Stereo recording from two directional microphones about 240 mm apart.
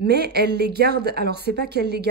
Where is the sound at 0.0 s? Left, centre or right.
Right.